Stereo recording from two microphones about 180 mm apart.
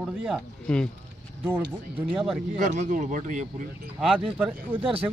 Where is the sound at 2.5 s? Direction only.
45° right (ahead or behind).